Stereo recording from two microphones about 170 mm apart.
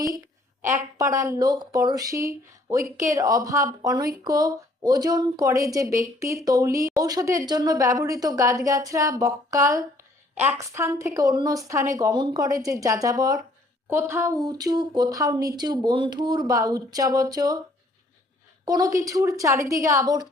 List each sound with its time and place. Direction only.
0.6 s speech: 15° right (ahead or behind)
18.6 s speech: 20° right (ahead or behind)